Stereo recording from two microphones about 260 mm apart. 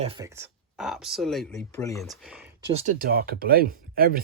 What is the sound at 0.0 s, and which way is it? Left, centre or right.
Speech, right.